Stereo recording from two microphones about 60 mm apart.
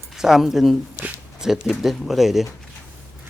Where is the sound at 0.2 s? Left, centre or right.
Centre.